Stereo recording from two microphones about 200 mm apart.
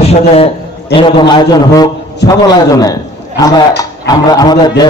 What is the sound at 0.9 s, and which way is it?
A man's voice, 25° left (ahead or behind).